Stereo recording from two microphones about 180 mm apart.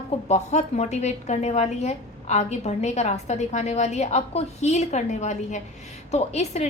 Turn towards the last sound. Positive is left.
turn(degrees=40)  # may be behind; listen again after turning